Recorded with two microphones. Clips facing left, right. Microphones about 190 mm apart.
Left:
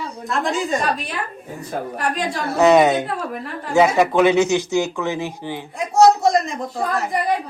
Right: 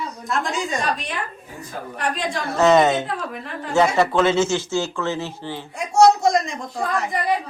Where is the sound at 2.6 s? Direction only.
15° left (ahead or behind).